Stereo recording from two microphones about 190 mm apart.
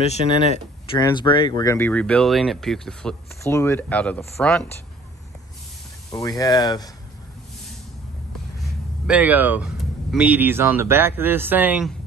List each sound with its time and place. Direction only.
0.8 s speech: 20° left (ahead or behind); by 4.6 s 5° left (ahead or behind)
6.1 s speech: 20° left (ahead or behind)
9.0 s speech: 5° right (ahead or behind)